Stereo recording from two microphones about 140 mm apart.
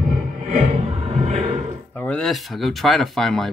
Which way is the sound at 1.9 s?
10° left (ahead or behind).